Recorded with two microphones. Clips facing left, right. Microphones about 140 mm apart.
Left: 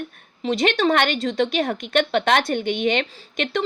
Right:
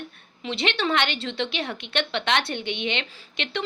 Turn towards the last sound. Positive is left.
turn(degrees=45)  # may be behind; listen again after turning